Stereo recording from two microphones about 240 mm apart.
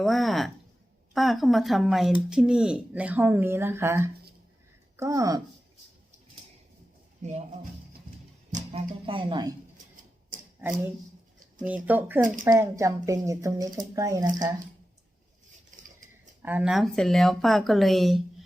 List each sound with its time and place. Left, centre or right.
0.0 s speech: centre
7.2 s speech: right
11.6 s speech: centre
15.7 s a sound: right
16.4 s speech: centre